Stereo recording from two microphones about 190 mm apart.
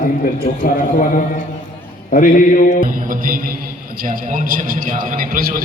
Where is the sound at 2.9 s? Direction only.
45° right (ahead or behind).